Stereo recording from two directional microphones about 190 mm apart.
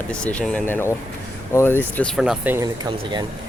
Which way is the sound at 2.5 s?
20° right (ahead or behind).